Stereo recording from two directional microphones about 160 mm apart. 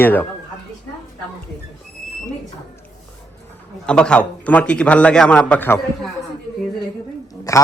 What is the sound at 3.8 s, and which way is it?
A man's voice, 5° left (ahead or behind).